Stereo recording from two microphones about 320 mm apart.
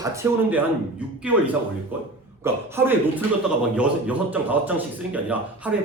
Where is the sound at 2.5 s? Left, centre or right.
Centre.